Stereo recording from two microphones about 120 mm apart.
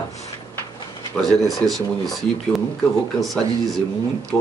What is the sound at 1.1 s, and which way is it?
Speech, 5° left (ahead or behind).